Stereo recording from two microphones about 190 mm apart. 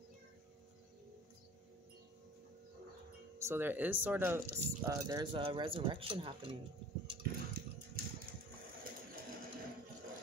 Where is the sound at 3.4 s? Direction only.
10° right (ahead or behind); by 6.5 s 25° right (ahead or behind).